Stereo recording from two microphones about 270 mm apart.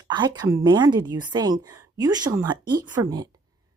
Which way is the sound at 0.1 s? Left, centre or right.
Centre.